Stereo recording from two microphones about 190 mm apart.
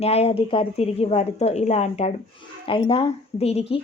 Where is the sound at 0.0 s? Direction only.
35° left (ahead or behind).